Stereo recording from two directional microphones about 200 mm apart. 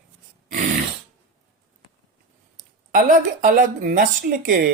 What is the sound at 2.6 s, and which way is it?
Speech, 40° right (ahead or behind).